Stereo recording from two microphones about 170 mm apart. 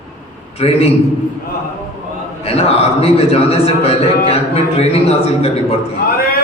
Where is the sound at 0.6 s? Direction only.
35° left (ahead or behind).